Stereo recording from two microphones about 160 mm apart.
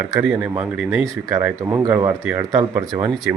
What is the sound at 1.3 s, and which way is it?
Speech, 20° right (ahead or behind).